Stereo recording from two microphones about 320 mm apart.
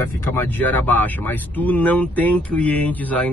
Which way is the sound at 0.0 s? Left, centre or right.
Centre.